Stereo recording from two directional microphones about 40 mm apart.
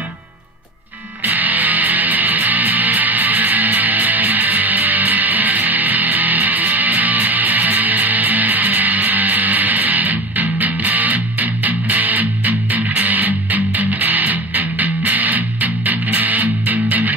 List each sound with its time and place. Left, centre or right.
1.2 s music: right